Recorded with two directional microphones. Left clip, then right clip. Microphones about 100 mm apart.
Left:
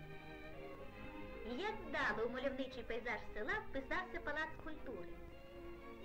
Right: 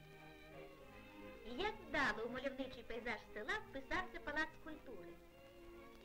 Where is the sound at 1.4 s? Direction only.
30° right (ahead or behind).